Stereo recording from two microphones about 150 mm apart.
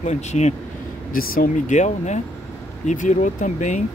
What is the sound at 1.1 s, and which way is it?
Speech, 75° left (ahead or behind).